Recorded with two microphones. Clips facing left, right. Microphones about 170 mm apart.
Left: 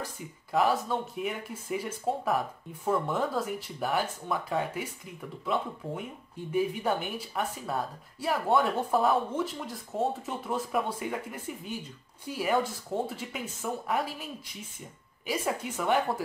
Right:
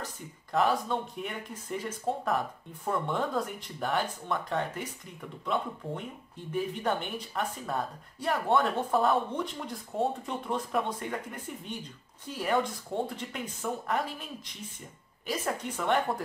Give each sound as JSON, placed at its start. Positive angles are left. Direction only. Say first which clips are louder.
{"t": 0.0, "sound": "a woman's voice", "louder": "left 2 dB", "side_deg": 5}